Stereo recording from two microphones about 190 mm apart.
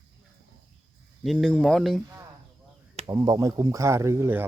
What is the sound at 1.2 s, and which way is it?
Speech, centre (ahead or behind).